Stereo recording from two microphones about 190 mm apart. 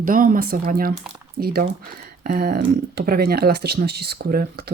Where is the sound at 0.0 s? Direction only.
45° right (ahead or behind).